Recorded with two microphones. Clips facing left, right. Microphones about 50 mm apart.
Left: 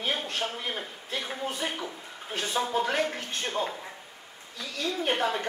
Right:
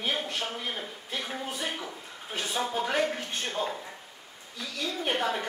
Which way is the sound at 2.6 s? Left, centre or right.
Centre.